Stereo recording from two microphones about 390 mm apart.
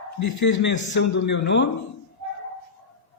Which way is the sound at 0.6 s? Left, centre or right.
Left.